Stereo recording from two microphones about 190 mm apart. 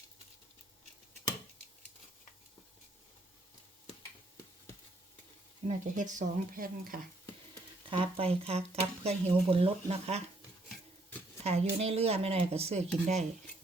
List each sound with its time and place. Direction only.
5.6 s speech: 40° right (ahead or behind)
7.9 s speech: 30° right (ahead or behind)
11.4 s speech: 35° right (ahead or behind)